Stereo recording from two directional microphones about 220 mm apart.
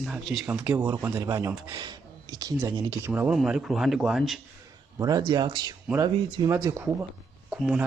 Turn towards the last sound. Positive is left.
turn(degrees=-5)  # may be behind; listen again after turning